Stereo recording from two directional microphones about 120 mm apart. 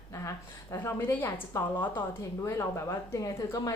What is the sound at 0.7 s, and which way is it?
A woman's voice, 20° left (ahead or behind).